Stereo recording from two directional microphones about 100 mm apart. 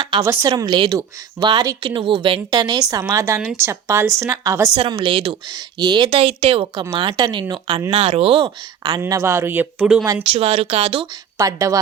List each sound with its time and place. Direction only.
0.1 s speech: 55° right (ahead or behind)
1.8 s speech: 55° right (ahead or behind)
2.5 s a woman's voice: 40° right (ahead or behind)
3.1 s speech: 25° right (ahead or behind)
4.8 s speech: 60° right (ahead or behind)
5.5 s speech: 45° right (ahead or behind)
6.1 s speech: 65° right (ahead or behind); by 7.8 s 45° right (ahead or behind)
7.9 s speech: 75° right (ahead or behind); by 9.0 s 45° right (ahead or behind)
9.0 s speech: 30° right (ahead or behind); by 10.1 s 10° right (ahead or behind)
10.3 s speech: 85° right
11.3 s a woman's voice: 35° right (ahead or behind)